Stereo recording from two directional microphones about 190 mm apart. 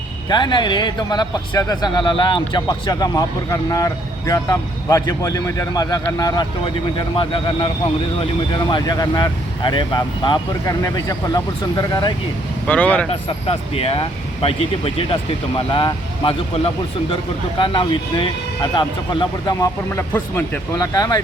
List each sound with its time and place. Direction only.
0.3 s speech: 25° left (ahead or behind)
8.7 s speech: 20° left (ahead or behind)
12.6 s speech: 5° left (ahead or behind)
13.1 s speech: 30° left (ahead or behind)